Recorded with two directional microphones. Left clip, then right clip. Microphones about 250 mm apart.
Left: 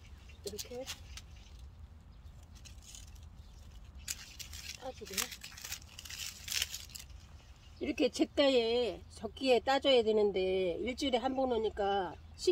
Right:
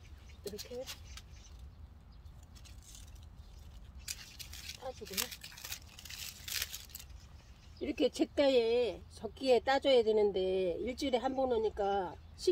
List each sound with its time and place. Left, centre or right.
0.4 s speech: centre
4.0 s a sound: centre
5.0 s crumpling: centre
7.8 s speech: left